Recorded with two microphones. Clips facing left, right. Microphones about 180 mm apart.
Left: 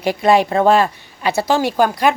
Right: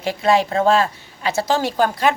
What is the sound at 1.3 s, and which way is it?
Speech, 15° left (ahead or behind).